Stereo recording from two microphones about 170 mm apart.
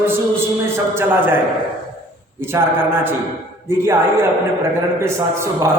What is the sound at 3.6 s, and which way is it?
A man's voice, 15° right (ahead or behind).